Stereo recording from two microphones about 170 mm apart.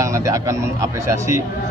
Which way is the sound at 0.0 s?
20° right (ahead or behind).